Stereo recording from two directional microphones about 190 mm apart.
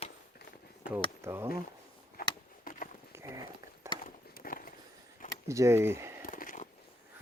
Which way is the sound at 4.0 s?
50° left (ahead or behind).